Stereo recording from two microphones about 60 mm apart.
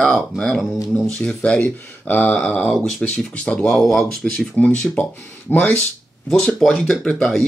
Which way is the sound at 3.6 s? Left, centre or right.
Centre.